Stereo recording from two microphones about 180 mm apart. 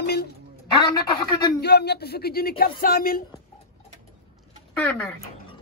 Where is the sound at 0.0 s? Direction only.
65° left (ahead or behind).